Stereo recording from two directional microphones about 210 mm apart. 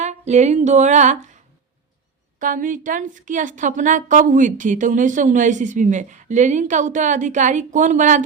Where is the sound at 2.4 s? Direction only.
40° right (ahead or behind).